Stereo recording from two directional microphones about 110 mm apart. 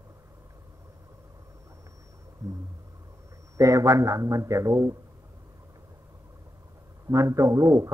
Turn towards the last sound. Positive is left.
turn(degrees=-30)  # may be behind; listen again after turning